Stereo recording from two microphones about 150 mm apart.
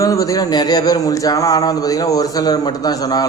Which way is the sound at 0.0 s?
20° left (ahead or behind).